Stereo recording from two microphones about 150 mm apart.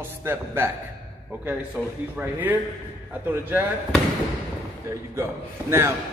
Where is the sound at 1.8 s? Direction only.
5° right (ahead or behind).